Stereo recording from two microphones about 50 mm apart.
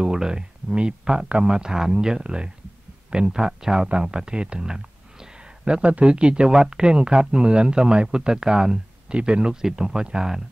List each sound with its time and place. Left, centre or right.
0.0 s speech: centre
5.7 s speech: right